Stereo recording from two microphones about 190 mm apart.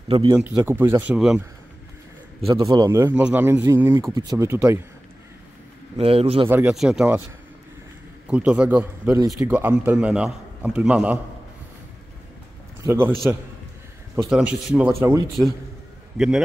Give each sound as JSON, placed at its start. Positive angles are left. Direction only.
{"t": 0.1, "sound": "a man's voice", "side_deg": -25}
{"t": 2.4, "sound": "a man's voice", "side_deg": -15}
{"t": 5.9, "sound": "a man's voice", "side_deg": -30}
{"t": 6.5, "sound": "speech", "side_deg": -5}
{"t": 8.3, "sound": "a man's voice", "side_deg": -5}
{"t": 12.8, "sound": "a man's voice", "side_deg": -10}
{"t": 14.3, "sound": "a man's voice", "side_deg": -5}
{"t": 16.2, "sound": "speech", "side_deg": 0}